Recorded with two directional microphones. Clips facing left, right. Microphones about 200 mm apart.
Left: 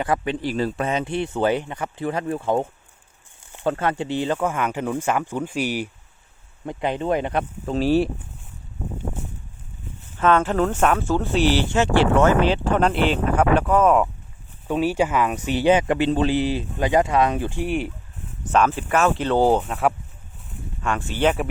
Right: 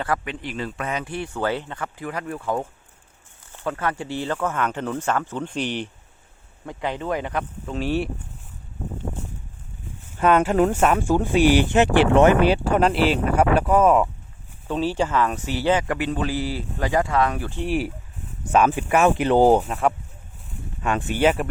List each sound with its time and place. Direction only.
0.3 s speech: 35° left (ahead or behind); by 1.9 s 15° left (ahead or behind)
2.0 s speech: 25° left (ahead or behind); by 5.9 s 10° left (ahead or behind)
6.7 s speech: 20° left (ahead or behind)
7.6 s speech: 35° left (ahead or behind)
10.2 s speech: 15° right (ahead or behind)
14.7 s speech: 10° left (ahead or behind)
17.6 s speech: 5° right (ahead or behind)
18.5 s speech: 15° right (ahead or behind)
20.8 s speech: 15° right (ahead or behind)
21.2 s speech: centre (ahead or behind)